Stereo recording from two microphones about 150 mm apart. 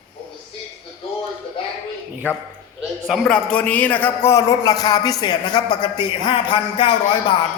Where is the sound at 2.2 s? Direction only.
10° left (ahead or behind).